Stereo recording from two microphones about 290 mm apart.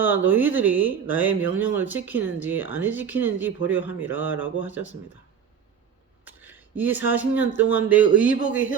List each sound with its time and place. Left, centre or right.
0.0 s speech: centre
6.2 s speech: centre